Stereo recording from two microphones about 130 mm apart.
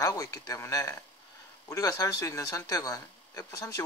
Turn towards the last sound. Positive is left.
turn(degrees=25)  # may be behind; listen again after turning